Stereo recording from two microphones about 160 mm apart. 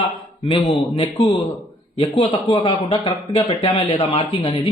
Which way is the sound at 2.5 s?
30° left (ahead or behind).